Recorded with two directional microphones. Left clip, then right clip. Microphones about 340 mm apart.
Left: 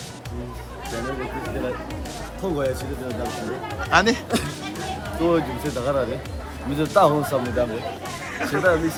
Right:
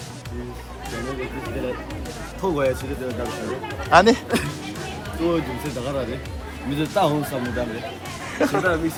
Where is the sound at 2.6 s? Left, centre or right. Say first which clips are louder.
Right 3 dB; centre.